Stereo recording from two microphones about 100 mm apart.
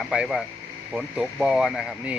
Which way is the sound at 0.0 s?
5° right (ahead or behind).